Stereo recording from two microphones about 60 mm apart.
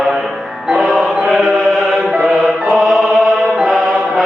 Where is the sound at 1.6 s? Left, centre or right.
Centre.